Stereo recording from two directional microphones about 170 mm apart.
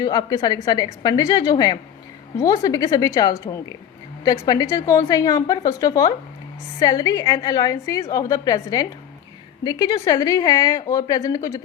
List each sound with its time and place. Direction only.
0.0 s a woman's voice: 25° left (ahead or behind)